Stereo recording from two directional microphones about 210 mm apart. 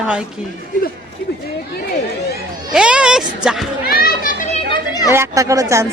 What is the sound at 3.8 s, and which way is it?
Children playing, 45° left (ahead or behind).